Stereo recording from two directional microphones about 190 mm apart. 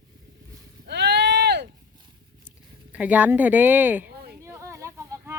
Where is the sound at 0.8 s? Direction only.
60° right (ahead or behind).